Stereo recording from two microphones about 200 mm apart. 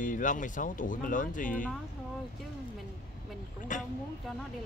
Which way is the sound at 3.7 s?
40° left (ahead or behind).